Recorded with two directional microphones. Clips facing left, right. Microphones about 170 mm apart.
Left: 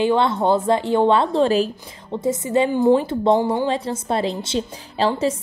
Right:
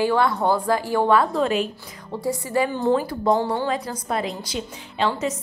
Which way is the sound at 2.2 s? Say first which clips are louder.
Left 4 dB; 20° left (ahead or behind).